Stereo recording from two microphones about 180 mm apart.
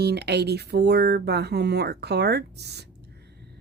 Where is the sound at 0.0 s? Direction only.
65° right (ahead or behind).